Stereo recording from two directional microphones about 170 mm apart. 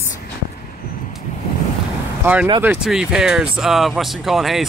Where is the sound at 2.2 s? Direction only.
15° right (ahead or behind).